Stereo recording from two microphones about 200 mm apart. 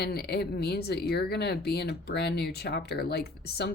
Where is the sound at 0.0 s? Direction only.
55° left (ahead or behind).